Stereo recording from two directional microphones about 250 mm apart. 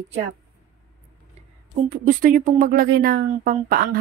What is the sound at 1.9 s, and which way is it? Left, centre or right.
Speech, right.